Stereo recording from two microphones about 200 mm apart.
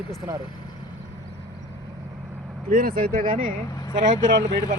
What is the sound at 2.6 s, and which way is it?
Speech, 45° right (ahead or behind).